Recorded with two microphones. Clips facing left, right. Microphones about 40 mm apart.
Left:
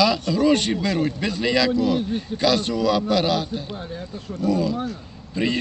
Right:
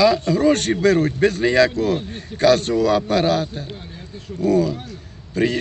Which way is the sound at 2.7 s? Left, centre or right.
Right.